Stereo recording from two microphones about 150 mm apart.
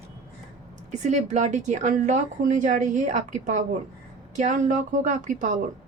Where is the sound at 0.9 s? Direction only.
55° right (ahead or behind).